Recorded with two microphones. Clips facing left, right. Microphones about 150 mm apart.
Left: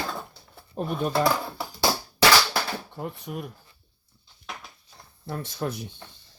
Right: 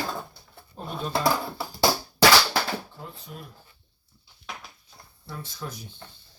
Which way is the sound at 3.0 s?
60° left (ahead or behind).